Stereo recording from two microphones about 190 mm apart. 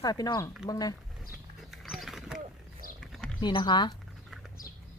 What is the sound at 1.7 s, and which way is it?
Pig, centre (ahead or behind).